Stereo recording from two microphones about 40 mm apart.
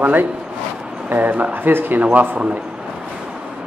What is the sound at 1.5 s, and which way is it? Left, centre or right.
Speech, right.